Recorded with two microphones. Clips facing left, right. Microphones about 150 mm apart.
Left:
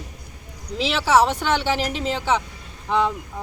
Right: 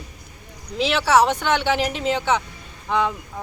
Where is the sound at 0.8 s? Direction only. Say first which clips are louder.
Right 1 dB; 5° left (ahead or behind).